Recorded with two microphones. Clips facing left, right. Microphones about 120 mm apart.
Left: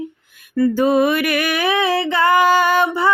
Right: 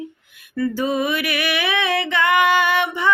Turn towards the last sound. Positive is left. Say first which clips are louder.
# left 4 dB
turn(degrees=40)  # may be behind; listen again after turning